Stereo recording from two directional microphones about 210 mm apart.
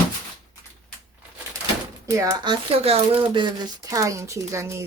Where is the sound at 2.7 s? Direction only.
30° right (ahead or behind).